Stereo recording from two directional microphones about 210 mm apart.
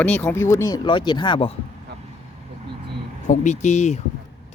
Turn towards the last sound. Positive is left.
turn(degrees=35)  # may be behind; listen again after turning